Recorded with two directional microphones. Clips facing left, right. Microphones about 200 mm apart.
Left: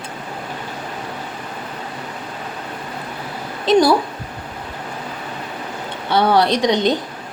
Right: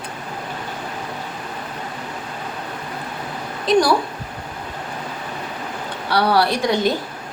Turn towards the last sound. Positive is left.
turn(degrees=20)  # may be behind; listen again after turning